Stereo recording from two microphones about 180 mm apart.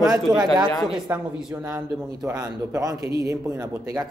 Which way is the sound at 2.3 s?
20° right (ahead or behind).